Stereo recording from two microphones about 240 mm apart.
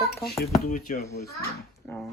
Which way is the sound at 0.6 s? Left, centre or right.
Left.